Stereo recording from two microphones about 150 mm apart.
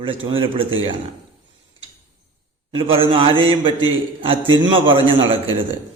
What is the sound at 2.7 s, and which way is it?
A man's voice, 35° right (ahead or behind).